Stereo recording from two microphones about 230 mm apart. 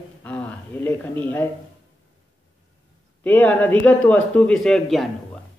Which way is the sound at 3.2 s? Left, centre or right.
Centre.